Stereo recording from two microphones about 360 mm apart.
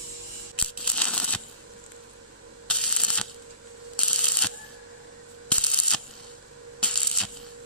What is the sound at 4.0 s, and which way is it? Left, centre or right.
Camera, right.